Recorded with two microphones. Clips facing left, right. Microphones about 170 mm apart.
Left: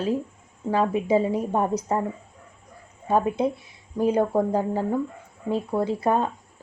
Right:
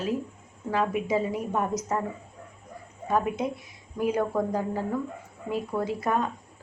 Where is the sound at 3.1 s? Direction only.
30° left (ahead or behind).